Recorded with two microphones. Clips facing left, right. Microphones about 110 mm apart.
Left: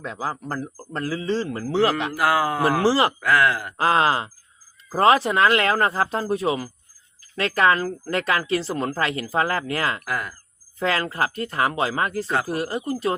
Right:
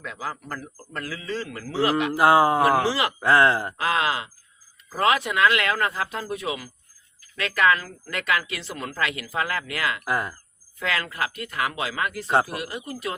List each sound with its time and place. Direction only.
0.0 s a woman's voice: 30° left (ahead or behind)
2.1 s speech: 25° right (ahead or behind)
2.8 s a woman's voice: 35° left (ahead or behind)
3.2 s speech: 30° right (ahead or behind)
3.8 s a woman's voice: 35° left (ahead or behind)
10.0 s speech: 25° right (ahead or behind)
10.8 s a woman's voice: 35° left (ahead or behind)